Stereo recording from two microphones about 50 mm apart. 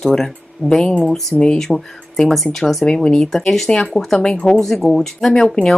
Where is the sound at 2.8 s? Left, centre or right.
Centre.